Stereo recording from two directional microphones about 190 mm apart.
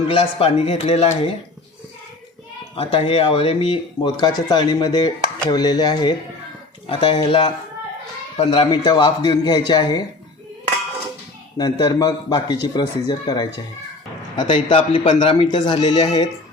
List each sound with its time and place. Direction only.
0.1 s speech: 30° left (ahead or behind)
2.7 s speech: 30° left (ahead or behind)
11.5 s speech: 20° left (ahead or behind)